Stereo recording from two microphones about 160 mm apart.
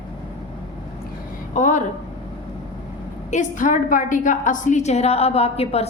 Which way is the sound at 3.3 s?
50° left (ahead or behind).